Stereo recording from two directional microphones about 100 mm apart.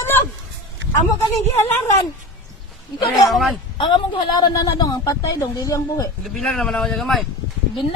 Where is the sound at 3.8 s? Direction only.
50° left (ahead or behind); by 6.1 s 35° left (ahead or behind).